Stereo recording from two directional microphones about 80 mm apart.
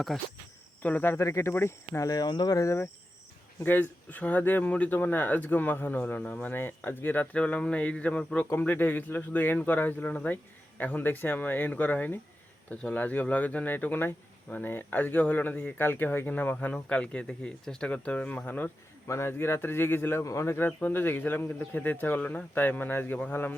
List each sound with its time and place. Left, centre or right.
0.1 s cricket: centre
0.8 s speech: left
1.1 s speech: left
2.0 s speech: left
2.6 s speech: left
19.0 s speech: left